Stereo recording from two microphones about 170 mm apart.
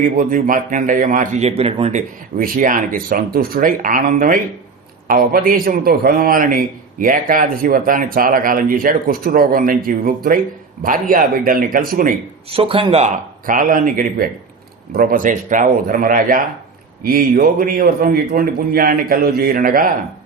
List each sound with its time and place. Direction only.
0.2 s a man's voice: 55° right (ahead or behind)
12.5 s speech: 30° right (ahead or behind)
13.4 s a man's voice: 55° right (ahead or behind)